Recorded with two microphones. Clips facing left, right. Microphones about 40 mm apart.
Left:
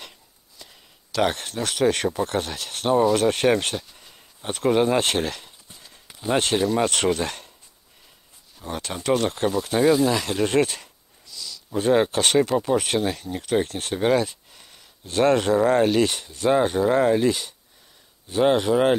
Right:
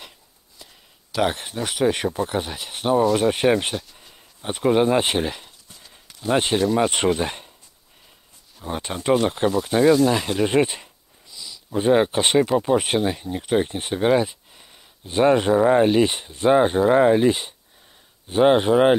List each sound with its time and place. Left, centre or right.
0.6 s a sound: centre
1.1 s speech: centre
2.9 s speech: centre
3.2 s a sound: centre
4.5 s speech: centre
5.7 s clip-clop: centre
6.5 s speech: centre
6.9 s speech: centre
8.5 s speech: centre
10.4 s speech: centre